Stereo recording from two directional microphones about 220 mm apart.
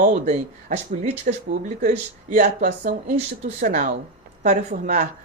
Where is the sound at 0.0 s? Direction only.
35° right (ahead or behind).